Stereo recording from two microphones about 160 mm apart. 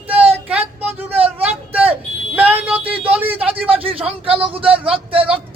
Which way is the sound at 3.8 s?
35° right (ahead or behind).